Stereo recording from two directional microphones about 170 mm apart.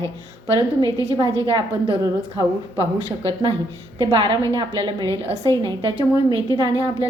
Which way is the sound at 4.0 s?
25° right (ahead or behind).